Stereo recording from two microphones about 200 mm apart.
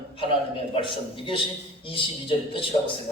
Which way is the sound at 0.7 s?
25° left (ahead or behind).